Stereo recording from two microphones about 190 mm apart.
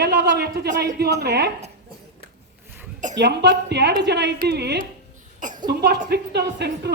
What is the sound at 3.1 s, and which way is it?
A woman's voice, 65° right (ahead or behind).